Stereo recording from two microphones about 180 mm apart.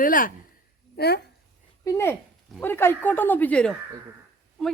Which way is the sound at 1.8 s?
15° left (ahead or behind).